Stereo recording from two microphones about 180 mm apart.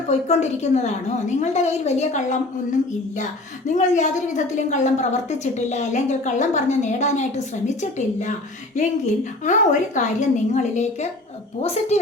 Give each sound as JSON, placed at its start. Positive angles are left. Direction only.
{"t": 0.1, "sound": "a woman's voice", "side_deg": 40}